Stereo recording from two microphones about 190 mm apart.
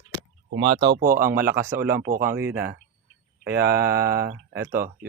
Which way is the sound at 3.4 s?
60° right (ahead or behind).